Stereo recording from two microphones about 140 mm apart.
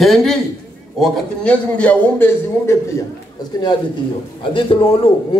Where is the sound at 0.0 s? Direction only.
Centre (ahead or behind); by 2.8 s 15° left (ahead or behind).